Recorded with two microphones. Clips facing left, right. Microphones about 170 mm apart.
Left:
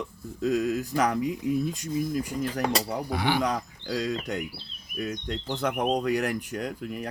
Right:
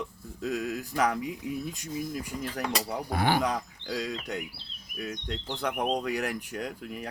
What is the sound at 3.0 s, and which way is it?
Speech, 50° right (ahead or behind).